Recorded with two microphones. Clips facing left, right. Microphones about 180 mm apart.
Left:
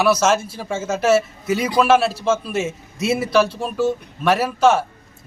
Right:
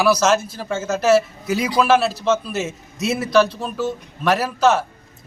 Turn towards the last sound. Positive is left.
turn(degrees=5)  # may be behind; listen again after turning